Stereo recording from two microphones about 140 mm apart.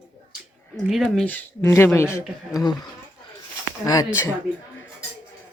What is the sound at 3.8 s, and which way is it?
Speech, 25° left (ahead or behind).